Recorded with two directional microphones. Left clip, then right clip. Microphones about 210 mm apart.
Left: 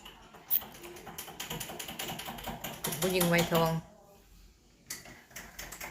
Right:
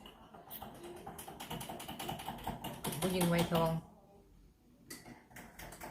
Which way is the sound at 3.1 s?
20° left (ahead or behind).